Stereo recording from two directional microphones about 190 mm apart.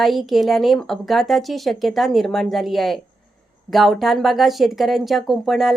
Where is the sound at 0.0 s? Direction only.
Centre (ahead or behind).